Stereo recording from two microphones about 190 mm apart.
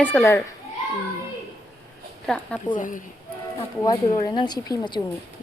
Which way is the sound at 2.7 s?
45° left (ahead or behind).